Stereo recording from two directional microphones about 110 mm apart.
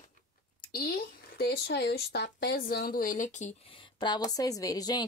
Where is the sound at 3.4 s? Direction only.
90° left.